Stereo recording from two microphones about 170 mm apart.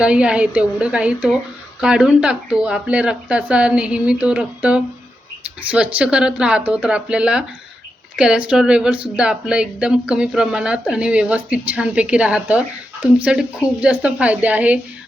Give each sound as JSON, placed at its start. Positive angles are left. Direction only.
{"t": 0.0, "sound": "speech", "side_deg": -5}